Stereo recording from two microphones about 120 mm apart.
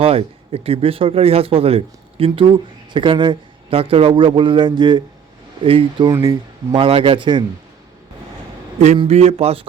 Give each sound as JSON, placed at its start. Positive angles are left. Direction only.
{"t": 0.0, "sound": "speech", "side_deg": -55}
{"t": 6.1, "sound": "speech", "side_deg": -30}
{"t": 6.7, "sound": "speech", "side_deg": -50}
{"t": 9.0, "sound": "speech", "side_deg": -65}